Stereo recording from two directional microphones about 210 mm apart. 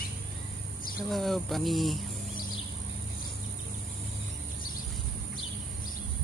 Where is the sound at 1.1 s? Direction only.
Centre (ahead or behind).